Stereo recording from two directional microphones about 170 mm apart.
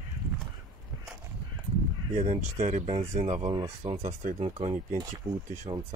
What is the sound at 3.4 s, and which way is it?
Speech, 25° right (ahead or behind).